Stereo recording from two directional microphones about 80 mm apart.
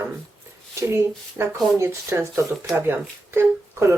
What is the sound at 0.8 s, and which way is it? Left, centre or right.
Speech, right.